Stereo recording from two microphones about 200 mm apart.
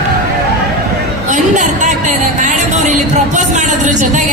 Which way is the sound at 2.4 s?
40° right (ahead or behind).